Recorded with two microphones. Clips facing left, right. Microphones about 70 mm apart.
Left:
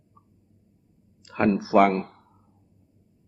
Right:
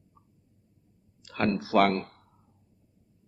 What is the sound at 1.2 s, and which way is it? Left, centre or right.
Speech, left.